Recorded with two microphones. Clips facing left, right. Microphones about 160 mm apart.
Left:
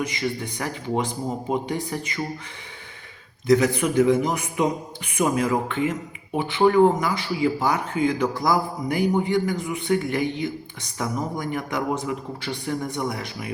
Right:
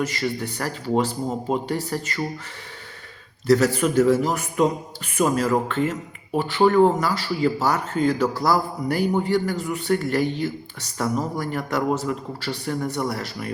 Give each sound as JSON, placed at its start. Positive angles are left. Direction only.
{"t": 0.0, "sound": "speech", "side_deg": 15}
{"t": 3.5, "sound": "speech", "side_deg": 15}